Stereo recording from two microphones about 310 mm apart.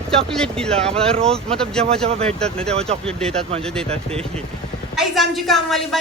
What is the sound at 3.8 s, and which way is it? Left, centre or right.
Speech, centre.